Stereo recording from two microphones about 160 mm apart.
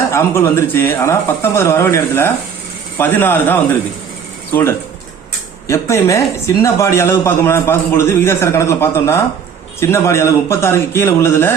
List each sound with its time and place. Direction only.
0.1 s speech: 15° left (ahead or behind)
5.6 s speech: 20° left (ahead or behind)